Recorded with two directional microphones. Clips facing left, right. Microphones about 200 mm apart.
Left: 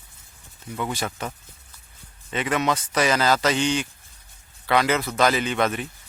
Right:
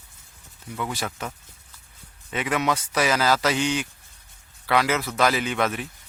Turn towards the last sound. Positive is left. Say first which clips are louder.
# left 2 dB
turn(degrees=-5)  # may be behind; listen again after turning